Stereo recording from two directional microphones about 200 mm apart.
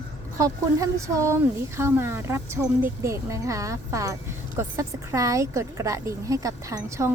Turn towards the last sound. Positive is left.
turn(degrees=-15)  # may be behind; listen again after turning